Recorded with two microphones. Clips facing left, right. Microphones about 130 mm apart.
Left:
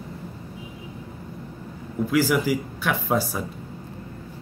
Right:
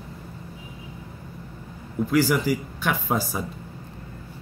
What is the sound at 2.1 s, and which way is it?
Speech, 5° left (ahead or behind).